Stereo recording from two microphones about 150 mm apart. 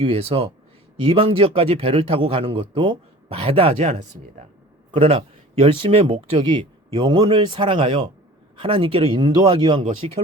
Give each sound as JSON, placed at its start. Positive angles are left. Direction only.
{"t": 0.0, "sound": "a man's voice", "side_deg": -40}